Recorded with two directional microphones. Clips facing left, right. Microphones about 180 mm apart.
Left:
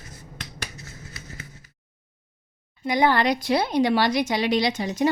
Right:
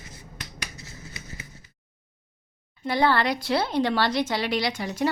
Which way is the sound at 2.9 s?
15° left (ahead or behind).